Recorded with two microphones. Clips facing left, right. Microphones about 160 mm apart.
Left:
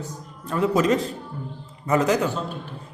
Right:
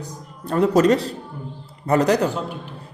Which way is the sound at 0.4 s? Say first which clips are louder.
Right 4 dB; 35° right (ahead or behind).